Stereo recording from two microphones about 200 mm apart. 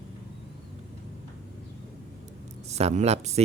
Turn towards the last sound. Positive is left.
turn(degrees=-35)  # may be behind; listen again after turning